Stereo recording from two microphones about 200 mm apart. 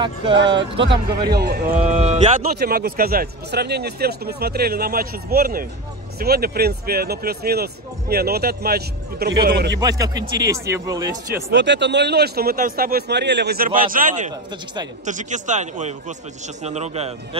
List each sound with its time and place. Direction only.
0.0 s speech: 25° right (ahead or behind)
0.7 s speech: 60° right (ahead or behind)
1.3 s speech: 50° right (ahead or behind)
1.8 s a man's voice: 30° right (ahead or behind)
2.4 s speech: 50° right (ahead or behind)
9.8 s speech: 20° right (ahead or behind)
11.5 s a man's voice: 60° right (ahead or behind); by 17.4 s 30° right (ahead or behind)